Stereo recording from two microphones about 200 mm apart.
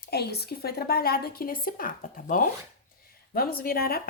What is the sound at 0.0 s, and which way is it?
Speech, 50° left (ahead or behind).